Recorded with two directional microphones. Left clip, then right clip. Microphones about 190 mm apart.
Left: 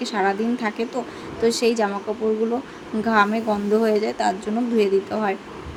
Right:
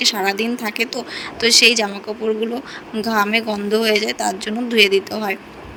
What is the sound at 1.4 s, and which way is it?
Speech, 50° right (ahead or behind).